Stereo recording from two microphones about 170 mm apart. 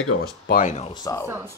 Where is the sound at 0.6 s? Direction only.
45° left (ahead or behind).